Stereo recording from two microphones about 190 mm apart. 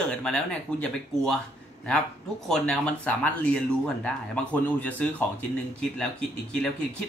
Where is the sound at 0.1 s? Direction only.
5° left (ahead or behind).